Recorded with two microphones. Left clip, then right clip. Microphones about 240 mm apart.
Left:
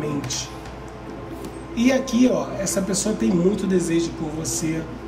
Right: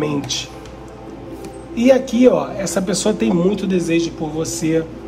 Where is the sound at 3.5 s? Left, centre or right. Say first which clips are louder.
Right 3 dB; centre.